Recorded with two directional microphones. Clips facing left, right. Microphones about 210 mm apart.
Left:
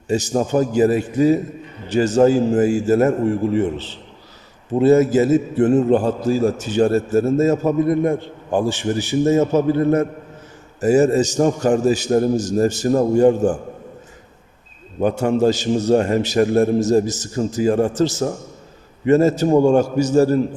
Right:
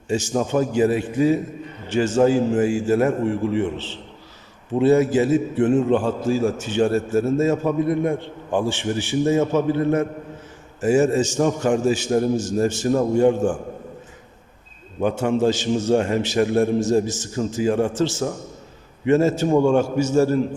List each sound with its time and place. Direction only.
0.1 s a man's voice: 40° left (ahead or behind)
15.0 s a man's voice: 40° left (ahead or behind)